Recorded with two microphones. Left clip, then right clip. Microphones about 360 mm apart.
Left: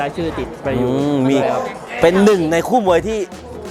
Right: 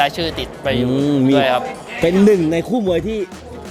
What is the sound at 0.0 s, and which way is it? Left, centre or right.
Speech, right.